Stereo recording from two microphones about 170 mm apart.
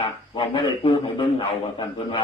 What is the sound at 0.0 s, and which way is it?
A man's voice, 30° left (ahead or behind).